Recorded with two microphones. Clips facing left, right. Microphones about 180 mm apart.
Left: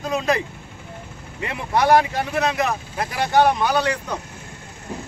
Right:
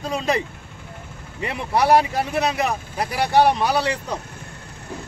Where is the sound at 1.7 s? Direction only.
5° right (ahead or behind).